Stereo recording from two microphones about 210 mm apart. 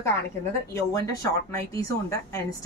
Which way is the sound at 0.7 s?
15° left (ahead or behind).